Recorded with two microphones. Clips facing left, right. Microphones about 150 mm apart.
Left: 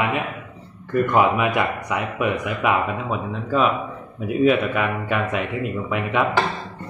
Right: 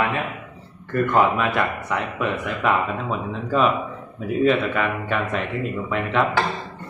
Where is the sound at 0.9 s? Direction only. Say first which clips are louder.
Left 1 dB; 10° left (ahead or behind).